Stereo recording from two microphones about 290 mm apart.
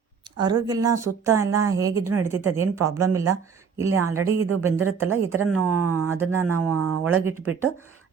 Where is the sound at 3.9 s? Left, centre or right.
Right.